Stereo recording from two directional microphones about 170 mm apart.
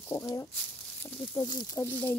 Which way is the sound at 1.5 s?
25° left (ahead or behind).